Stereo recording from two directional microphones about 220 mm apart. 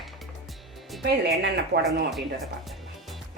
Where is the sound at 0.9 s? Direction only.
Centre (ahead or behind).